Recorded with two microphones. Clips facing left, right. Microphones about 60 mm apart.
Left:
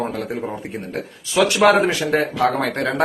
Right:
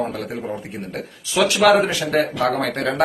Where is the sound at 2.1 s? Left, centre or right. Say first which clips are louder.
Right 1 dB; centre.